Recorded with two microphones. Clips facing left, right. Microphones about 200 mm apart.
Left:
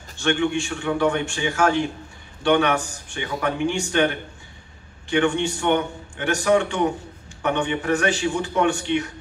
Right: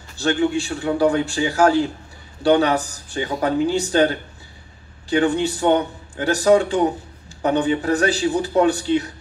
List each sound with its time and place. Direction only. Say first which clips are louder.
0.2 s a man's voice: right 2 dB; 35° right (ahead or behind)